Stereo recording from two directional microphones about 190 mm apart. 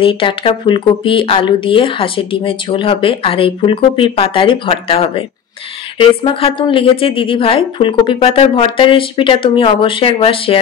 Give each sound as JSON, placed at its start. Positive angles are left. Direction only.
{"t": 0.0, "sound": "speech", "side_deg": 25}